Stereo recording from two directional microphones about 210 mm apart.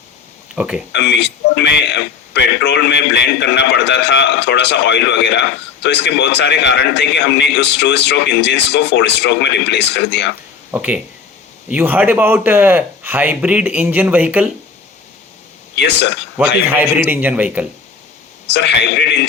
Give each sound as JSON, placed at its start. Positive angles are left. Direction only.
{"t": 0.5, "sound": "speech", "side_deg": -5}
{"t": 0.9, "sound": "a man's voice", "side_deg": 55}
{"t": 10.7, "sound": "a man's voice", "side_deg": -5}
{"t": 15.7, "sound": "speech", "side_deg": 55}
{"t": 16.4, "sound": "a man's voice", "side_deg": -10}
{"t": 18.5, "sound": "a man's voice", "side_deg": 55}